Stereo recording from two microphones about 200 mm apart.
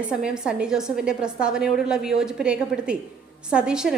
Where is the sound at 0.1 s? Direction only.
5° right (ahead or behind).